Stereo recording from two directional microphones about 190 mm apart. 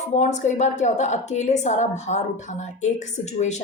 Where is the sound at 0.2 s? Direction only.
40° left (ahead or behind).